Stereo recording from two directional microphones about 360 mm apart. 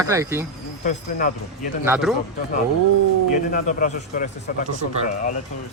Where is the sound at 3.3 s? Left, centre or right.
Left.